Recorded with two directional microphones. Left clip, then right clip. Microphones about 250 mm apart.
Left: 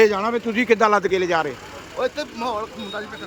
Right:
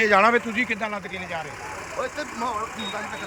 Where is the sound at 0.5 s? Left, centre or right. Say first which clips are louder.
Left 9 dB; centre.